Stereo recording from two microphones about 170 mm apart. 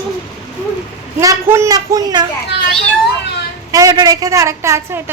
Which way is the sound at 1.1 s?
15° right (ahead or behind).